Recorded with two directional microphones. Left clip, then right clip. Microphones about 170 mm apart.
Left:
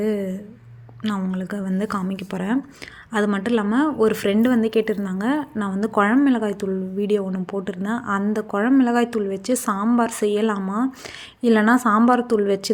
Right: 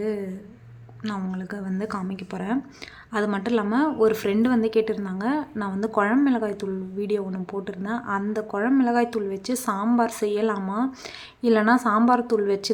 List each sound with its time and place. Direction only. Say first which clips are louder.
0.0 s a woman's voice: left 4 dB; 25° left (ahead or behind)